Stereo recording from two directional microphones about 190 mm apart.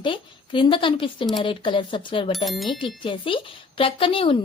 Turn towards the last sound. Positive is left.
turn(degrees=30)  # may be behind; listen again after turning